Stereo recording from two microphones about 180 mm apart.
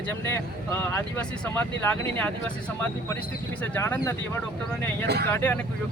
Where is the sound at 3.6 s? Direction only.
10° left (ahead or behind).